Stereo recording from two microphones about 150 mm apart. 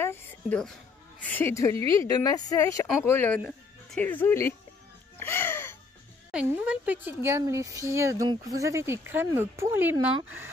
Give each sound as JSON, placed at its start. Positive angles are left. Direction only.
{"t": 0.0, "sound": "a woman's voice", "side_deg": 15}
{"t": 5.2, "sound": "music", "side_deg": 15}
{"t": 6.3, "sound": "speech", "side_deg": -10}